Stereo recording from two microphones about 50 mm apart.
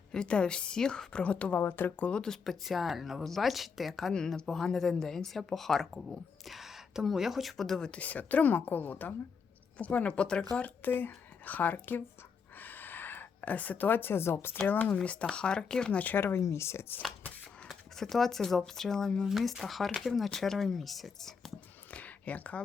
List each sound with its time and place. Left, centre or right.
0.1 s a woman's voice: centre
1.5 s speech: left
2.0 s a woman's voice: left
2.3 s speech: centre
4.1 s speech: centre
7.9 s a woman's voice: left
10.6 s speech: left
12.5 s a sound: left
14.7 s a woman's voice: left
16.0 s speech: left
16.4 s speech: left
17.7 s speech: centre
19.2 s speech: centre
21.8 s a sound: left